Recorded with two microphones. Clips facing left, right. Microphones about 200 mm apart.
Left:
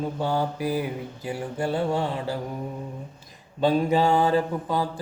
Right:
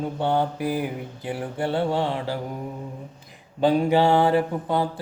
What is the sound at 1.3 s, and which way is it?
Mantra, 25° right (ahead or behind).